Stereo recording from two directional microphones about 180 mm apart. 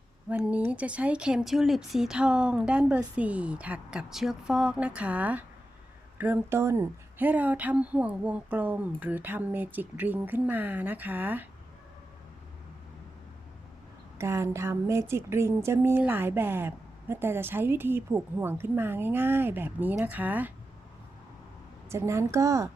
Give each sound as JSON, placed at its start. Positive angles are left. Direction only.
{"t": 0.3, "sound": "speech", "side_deg": -10}
{"t": 14.2, "sound": "speech", "side_deg": -15}
{"t": 21.8, "sound": "speech", "side_deg": -15}